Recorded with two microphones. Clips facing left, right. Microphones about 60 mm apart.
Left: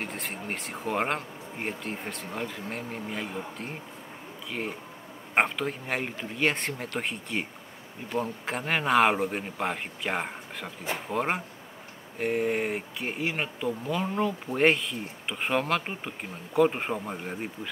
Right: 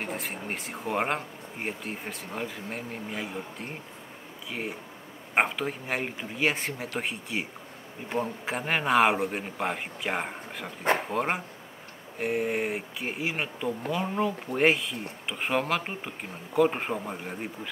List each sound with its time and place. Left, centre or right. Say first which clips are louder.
0.0 s speech: right 1 dB; centre
10.8 s speech: right 9 dB; right
11.1 s speech: even; centre